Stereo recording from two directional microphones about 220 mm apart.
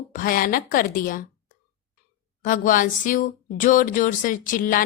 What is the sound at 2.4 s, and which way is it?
A woman's voice, 35° left (ahead or behind).